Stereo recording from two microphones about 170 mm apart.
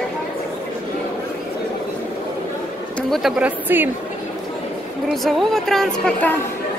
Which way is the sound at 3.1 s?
5° right (ahead or behind).